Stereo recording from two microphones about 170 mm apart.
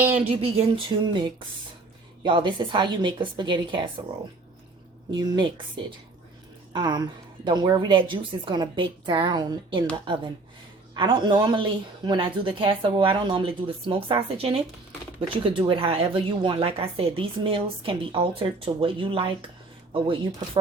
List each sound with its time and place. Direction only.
0.3 s a woman's voice: 35° right (ahead or behind)
5.1 s a woman's voice: 25° right (ahead or behind)
10.9 s a woman's voice: 30° right (ahead or behind)